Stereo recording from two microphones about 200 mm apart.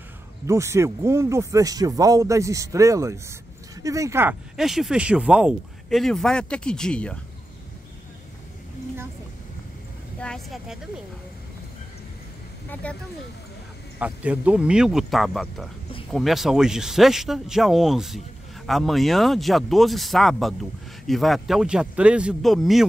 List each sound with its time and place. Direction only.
0.5 s speech: 15° right (ahead or behind); by 7.2 s 5° left (ahead or behind)
10.2 s speech: centre (ahead or behind)
12.8 s speech: 5° left (ahead or behind)
13.9 s speech: 5° right (ahead or behind)